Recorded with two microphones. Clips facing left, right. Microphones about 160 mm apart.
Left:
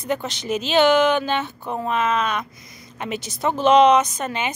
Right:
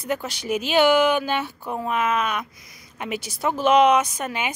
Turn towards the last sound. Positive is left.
turn(degrees=-10)  # may be behind; listen again after turning